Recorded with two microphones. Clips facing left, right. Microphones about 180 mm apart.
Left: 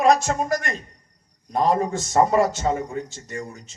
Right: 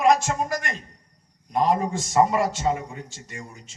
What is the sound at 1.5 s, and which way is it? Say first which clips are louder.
A man's voice: left 1 dB; 40° left (ahead or behind).